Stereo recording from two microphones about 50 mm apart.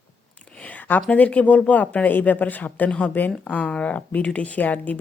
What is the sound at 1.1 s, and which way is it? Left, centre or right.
A woman's voice, left.